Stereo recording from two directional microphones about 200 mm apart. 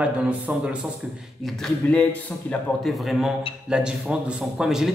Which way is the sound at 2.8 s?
Centre (ahead or behind).